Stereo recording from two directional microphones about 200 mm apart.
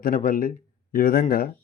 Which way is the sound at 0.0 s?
45° left (ahead or behind).